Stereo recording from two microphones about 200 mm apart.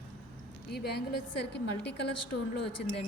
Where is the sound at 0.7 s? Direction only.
55° left (ahead or behind).